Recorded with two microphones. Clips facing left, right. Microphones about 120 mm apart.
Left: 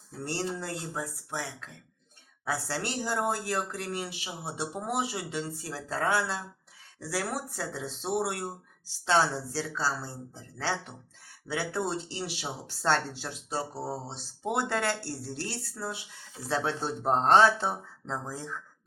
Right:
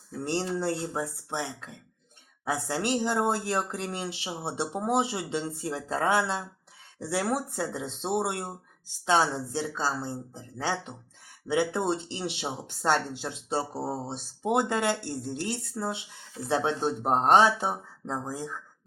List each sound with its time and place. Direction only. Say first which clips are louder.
0.3 s speech: right 5 dB; 25° right (ahead or behind)